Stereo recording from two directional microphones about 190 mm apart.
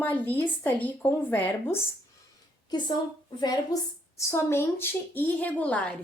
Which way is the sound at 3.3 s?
20° left (ahead or behind).